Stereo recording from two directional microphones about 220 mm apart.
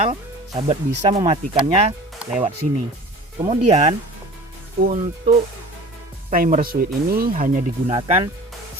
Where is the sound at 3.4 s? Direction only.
30° right (ahead or behind).